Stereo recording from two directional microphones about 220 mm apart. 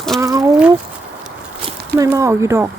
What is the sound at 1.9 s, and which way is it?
Speech, 15° right (ahead or behind).